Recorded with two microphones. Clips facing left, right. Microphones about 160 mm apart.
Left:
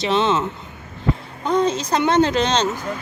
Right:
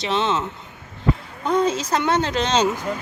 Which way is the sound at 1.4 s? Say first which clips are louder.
Left 1 dB; 5° right (ahead or behind).